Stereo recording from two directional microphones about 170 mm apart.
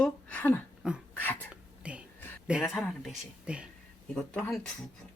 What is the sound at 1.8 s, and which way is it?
Whispering, 5° right (ahead or behind).